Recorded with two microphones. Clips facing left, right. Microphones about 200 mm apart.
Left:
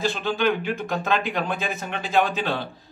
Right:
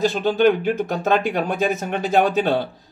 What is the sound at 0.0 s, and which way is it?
A man's voice, 45° right (ahead or behind).